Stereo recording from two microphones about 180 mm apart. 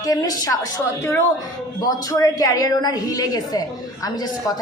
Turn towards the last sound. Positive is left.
turn(degrees=20)  # may be behind; listen again after turning